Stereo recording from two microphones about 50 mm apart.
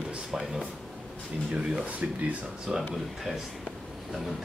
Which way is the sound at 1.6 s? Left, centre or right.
Right.